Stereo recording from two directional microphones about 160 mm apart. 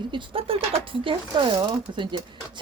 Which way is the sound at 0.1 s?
35° right (ahead or behind).